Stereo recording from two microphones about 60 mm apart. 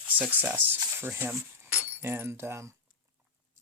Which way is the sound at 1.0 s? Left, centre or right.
Right.